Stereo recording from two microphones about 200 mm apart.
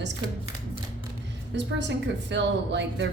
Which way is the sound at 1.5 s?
60° right (ahead or behind).